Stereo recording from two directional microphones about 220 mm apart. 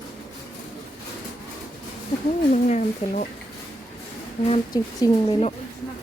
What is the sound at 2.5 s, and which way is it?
Speech, 35° left (ahead or behind).